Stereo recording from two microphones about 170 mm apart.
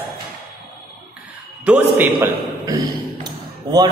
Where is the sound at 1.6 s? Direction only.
5° right (ahead or behind).